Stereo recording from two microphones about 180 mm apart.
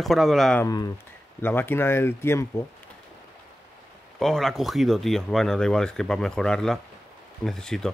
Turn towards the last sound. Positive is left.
turn(degrees=5)  # may be behind; listen again after turning